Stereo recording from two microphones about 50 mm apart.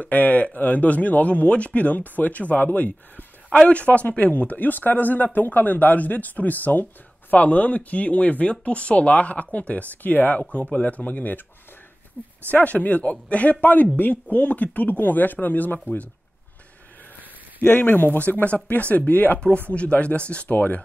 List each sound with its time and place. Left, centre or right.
0.0 s speech: left
12.4 s speech: left
17.6 s speech: left
19.7 s speech: left